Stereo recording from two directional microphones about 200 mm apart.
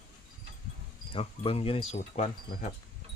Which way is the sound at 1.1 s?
30° left (ahead or behind).